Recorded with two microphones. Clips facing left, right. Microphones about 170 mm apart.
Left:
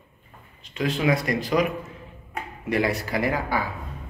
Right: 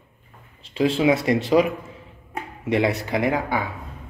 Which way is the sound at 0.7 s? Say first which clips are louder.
Right 4 dB; 30° right (ahead or behind).